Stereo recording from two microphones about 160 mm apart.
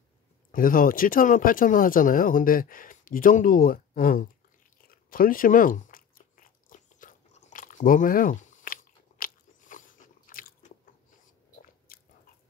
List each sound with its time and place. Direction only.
0.5 s speech: 60° left (ahead or behind)
4.8 s biting: 60° left (ahead or behind)
11.9 s biting: 70° left (ahead or behind)